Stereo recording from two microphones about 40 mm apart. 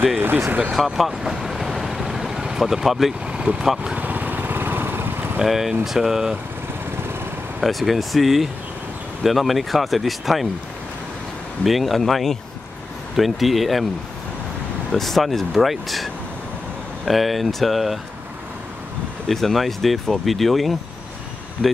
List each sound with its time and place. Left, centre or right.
0.2 s speech: right
0.7 s speech: centre
1.2 s train: centre
2.6 s speech: centre
3.3 s speech: right
3.6 s speech: centre
3.9 s vehicle: right
5.4 s speech: centre
7.6 s speech: centre
11.6 s speech: centre
14.9 s speech: centre
19.2 s speech: centre